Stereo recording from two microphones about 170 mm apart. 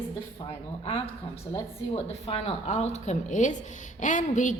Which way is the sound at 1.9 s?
35° left (ahead or behind).